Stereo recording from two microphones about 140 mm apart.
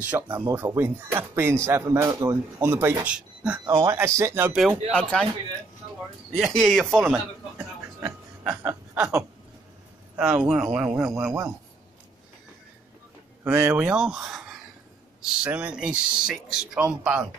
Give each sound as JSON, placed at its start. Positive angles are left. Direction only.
{"t": 0.0, "sound": "speech", "side_deg": -10}
{"t": 3.7, "sound": "speech", "side_deg": -20}
{"t": 4.9, "sound": "speech", "side_deg": 5}
{"t": 6.3, "sound": "speech", "side_deg": 0}
{"t": 8.0, "sound": "chuckle", "side_deg": -10}
{"t": 10.1, "sound": "speech", "side_deg": -5}
{"t": 13.4, "sound": "speech", "side_deg": -15}